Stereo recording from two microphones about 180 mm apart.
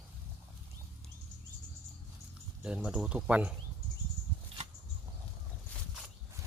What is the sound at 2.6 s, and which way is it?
Speech, 5° right (ahead or behind).